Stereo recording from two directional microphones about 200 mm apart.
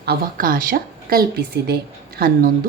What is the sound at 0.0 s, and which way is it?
Speech, 50° right (ahead or behind).